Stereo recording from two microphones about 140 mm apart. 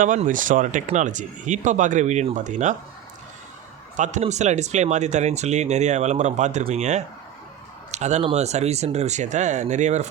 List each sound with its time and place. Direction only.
0.3 s speech: 70° right (ahead or behind)
3.9 s a man's voice: 60° right (ahead or behind)
7.9 s a sound: 55° right (ahead or behind)
8.2 s speech: 50° right (ahead or behind)